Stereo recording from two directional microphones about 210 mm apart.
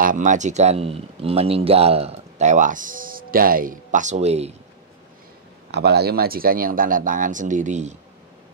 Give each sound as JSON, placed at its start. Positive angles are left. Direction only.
{"t": 0.0, "sound": "speech", "side_deg": -40}
{"t": 5.7, "sound": "speech", "side_deg": -50}